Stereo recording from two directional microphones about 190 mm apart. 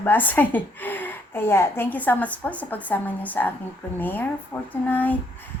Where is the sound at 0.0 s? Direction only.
10° left (ahead or behind).